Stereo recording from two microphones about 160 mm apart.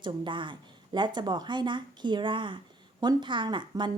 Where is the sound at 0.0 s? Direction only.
30° right (ahead or behind).